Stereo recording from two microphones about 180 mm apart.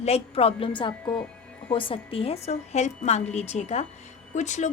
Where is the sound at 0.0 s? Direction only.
35° left (ahead or behind).